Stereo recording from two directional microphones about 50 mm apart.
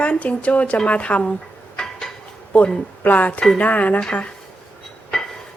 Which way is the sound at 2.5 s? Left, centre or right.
Left.